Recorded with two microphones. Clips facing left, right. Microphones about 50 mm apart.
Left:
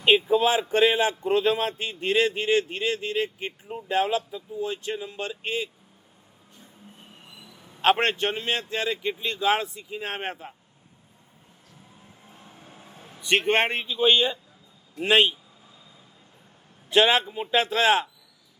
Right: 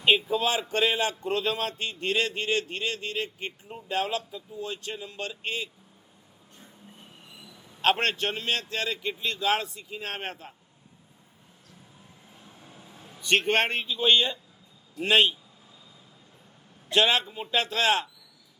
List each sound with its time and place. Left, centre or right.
0.3 s a man's voice: left
4.6 s speech: left
7.3 s a sound: left
7.8 s speech: left
12.5 s vehicle: left
13.2 s a man's voice: centre
16.9 s speech: left